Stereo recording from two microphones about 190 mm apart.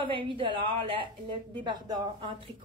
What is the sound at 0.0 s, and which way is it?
A woman's voice, 25° right (ahead or behind).